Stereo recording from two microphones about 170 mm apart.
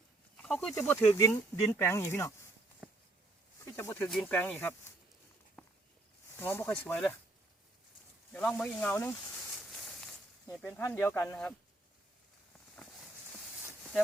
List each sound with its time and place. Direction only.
0.3 s snake: 5° left (ahead or behind)
0.7 s speech: 10° left (ahead or behind)
3.7 s speech: 15° left (ahead or behind)
6.4 s speech: 15° left (ahead or behind)
8.3 s speech: 10° left (ahead or behind)
10.6 s speech: 10° left (ahead or behind)